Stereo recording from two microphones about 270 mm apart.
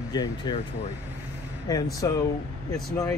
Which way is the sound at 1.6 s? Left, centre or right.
Centre.